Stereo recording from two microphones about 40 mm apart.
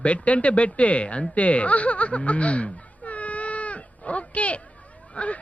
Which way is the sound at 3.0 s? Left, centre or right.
Left.